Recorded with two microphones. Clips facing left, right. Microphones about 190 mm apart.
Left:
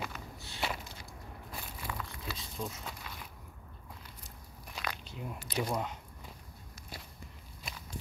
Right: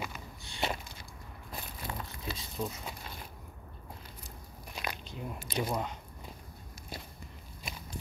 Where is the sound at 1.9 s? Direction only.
35° right (ahead or behind).